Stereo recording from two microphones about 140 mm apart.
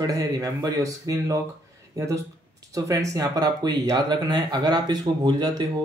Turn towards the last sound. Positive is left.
turn(degrees=-30)  # may be behind; listen again after turning